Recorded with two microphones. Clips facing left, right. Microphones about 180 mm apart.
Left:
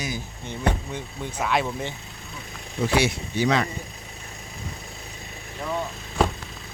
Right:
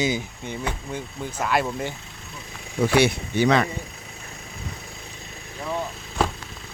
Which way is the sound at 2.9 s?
60° right (ahead or behind).